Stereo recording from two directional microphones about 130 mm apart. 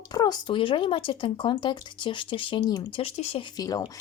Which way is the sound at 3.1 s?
50° left (ahead or behind).